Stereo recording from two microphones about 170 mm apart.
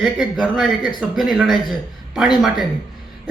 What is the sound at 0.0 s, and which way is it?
Speech, centre (ahead or behind).